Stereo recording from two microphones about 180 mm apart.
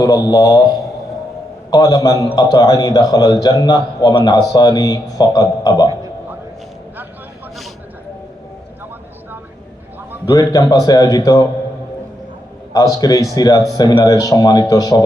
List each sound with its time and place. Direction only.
0.0 s a man's voice: 20° left (ahead or behind)
10.2 s a man's voice: 20° left (ahead or behind)
12.7 s a man's voice: 20° left (ahead or behind)